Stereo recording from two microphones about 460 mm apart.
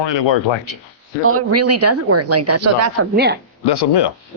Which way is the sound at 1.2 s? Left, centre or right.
Right.